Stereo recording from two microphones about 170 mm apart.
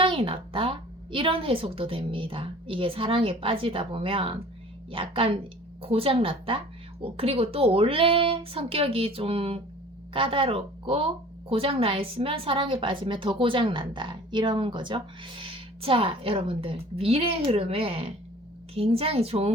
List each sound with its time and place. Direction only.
0.0 s speech: 30° right (ahead or behind)